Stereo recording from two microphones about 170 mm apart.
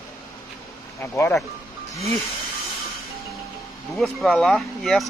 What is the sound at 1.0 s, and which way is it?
Speech, 15° left (ahead or behind).